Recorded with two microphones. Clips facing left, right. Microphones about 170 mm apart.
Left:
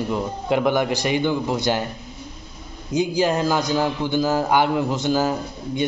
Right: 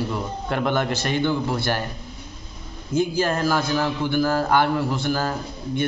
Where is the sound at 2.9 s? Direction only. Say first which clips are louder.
Left 2 dB; 15° left (ahead or behind).